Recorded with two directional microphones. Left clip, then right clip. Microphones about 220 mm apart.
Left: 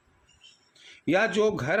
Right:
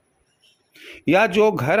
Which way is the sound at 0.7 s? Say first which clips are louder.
Right 7 dB; 35° right (ahead or behind).